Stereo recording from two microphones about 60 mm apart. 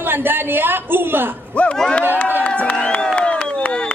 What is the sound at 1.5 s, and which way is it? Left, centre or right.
Speech, centre.